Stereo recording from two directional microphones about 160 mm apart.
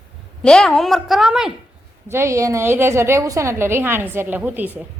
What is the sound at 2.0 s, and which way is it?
A woman's voice, 15° right (ahead or behind).